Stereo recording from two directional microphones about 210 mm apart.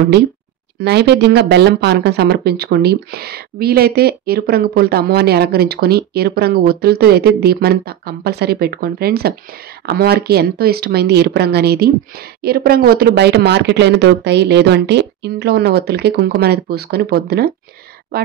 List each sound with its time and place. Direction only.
0.7 s speech: 50° right (ahead or behind)